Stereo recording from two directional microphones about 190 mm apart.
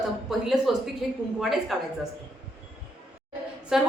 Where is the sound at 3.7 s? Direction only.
Centre (ahead or behind).